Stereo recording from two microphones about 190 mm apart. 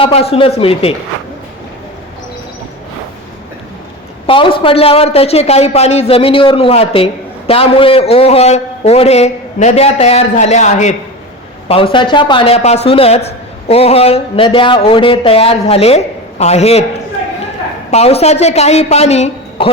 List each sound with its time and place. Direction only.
0.0 s speech: 30° left (ahead or behind)
4.3 s speech: 30° left (ahead or behind)
11.7 s speech: 25° left (ahead or behind)
17.9 s speech: 35° left (ahead or behind)